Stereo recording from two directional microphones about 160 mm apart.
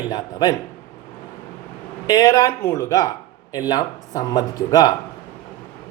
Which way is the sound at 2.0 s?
20° left (ahead or behind).